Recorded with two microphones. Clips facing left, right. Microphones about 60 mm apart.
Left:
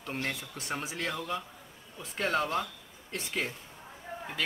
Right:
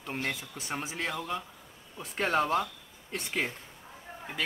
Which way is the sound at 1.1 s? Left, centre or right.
Centre.